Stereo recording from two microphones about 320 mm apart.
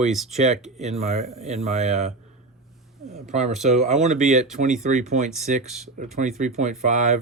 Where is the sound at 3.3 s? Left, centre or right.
Right.